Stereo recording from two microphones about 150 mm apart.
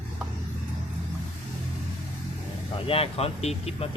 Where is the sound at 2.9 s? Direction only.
40° left (ahead or behind).